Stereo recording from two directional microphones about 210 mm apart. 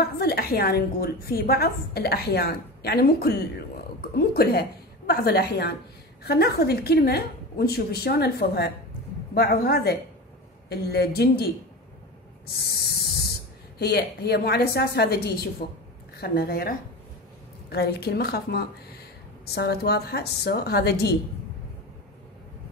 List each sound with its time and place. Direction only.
0.0 s a woman's voice: 45° left (ahead or behind)
12.5 s a woman's voice: 50° left (ahead or behind)